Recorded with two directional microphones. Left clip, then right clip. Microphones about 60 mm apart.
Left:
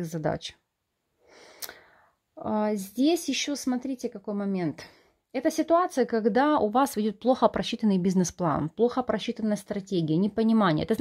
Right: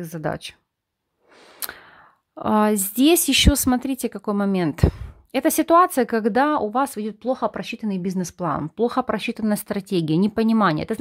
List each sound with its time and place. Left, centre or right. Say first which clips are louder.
0.0 s speech: right 2 dB; centre
1.6 s a sound: right 8 dB; right
2.0 s a woman's voice: right 7 dB; right
5.8 s speech: right 8 dB; right
6.5 s speech: right 2 dB; centre
6.8 s speech: right 2 dB; centre
8.8 s speech: right 4 dB; right
10.6 s speech: right 6 dB; right